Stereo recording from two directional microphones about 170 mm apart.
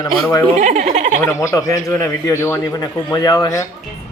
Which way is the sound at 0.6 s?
45° right (ahead or behind).